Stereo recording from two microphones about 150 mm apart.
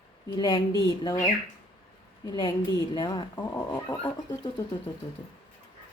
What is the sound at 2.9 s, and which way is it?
Speech, 30° left (ahead or behind).